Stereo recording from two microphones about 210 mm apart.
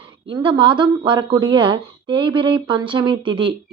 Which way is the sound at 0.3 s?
20° right (ahead or behind).